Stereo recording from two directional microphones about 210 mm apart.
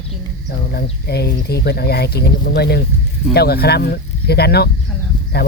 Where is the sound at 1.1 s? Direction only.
50° left (ahead or behind).